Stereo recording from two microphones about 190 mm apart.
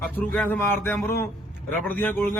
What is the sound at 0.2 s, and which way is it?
A man's voice, 10° left (ahead or behind).